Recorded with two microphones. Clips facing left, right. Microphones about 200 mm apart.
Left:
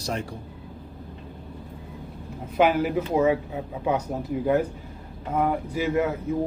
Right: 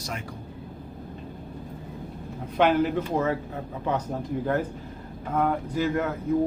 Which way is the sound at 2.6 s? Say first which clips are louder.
Left 1 dB; 5° left (ahead or behind).